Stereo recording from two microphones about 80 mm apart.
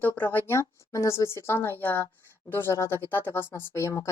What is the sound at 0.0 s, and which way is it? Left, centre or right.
Speech, left.